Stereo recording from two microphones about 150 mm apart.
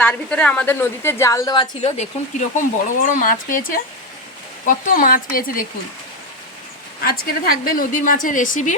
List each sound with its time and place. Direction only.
0.0 s a woman's voice: 10° left (ahead or behind); by 1.9 s 30° left (ahead or behind)
2.0 s a woman's voice: 55° left (ahead or behind); by 5.6 s 70° left (ahead or behind)
7.0 s a woman's voice: 80° left; by 8.7 s 60° left (ahead or behind)